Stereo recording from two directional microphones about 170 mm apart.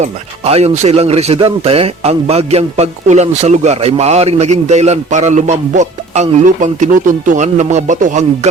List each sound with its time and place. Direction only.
0.0 s speech: 40° right (ahead or behind)